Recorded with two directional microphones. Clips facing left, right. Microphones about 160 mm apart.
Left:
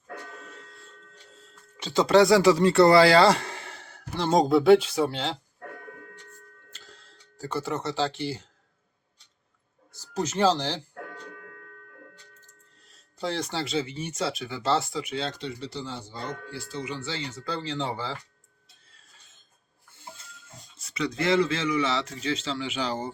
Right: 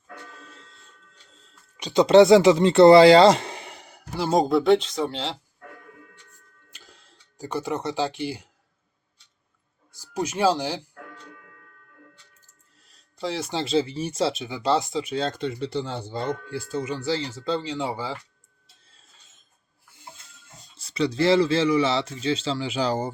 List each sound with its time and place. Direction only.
1.7 s speech: 15° right (ahead or behind); by 5.4 s centre (ahead or behind)
6.7 s tick-tock: 15° right (ahead or behind)
9.9 s speech: 10° right (ahead or behind)
12.4 s music: 5° right (ahead or behind)
13.1 s speech: centre (ahead or behind)
13.5 s speech: 20° right (ahead or behind)
13.7 s speech: 35° right (ahead or behind)
15.1 s speech: 45° right (ahead or behind); by 18.2 s 10° right (ahead or behind)
20.7 s speech: 30° right (ahead or behind)